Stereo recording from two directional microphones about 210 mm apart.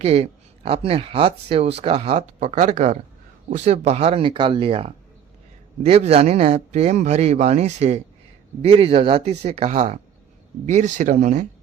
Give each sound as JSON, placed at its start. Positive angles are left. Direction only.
{"t": 0.0, "sound": "speech", "side_deg": -30}